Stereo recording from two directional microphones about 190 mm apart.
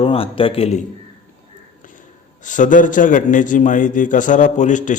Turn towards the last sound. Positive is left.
turn(degrees=40)  # may be behind; listen again after turning